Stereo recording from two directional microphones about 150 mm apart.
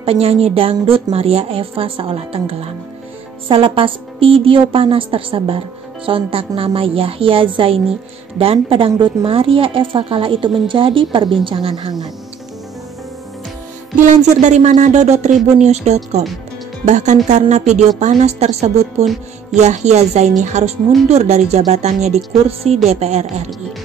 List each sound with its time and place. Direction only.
0.0 s a woman's voice: 40° right (ahead or behind)
13.9 s speech: 55° right (ahead or behind)